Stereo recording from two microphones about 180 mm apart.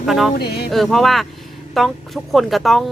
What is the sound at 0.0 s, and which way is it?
Speech, centre (ahead or behind).